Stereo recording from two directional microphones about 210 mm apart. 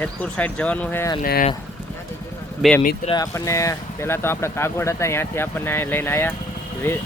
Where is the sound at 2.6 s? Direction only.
5° right (ahead or behind).